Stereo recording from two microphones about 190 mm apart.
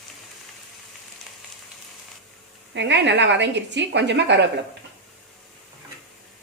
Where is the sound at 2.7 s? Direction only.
65° right (ahead or behind).